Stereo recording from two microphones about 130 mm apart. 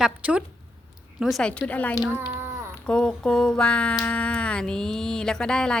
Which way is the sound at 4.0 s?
10° left (ahead or behind).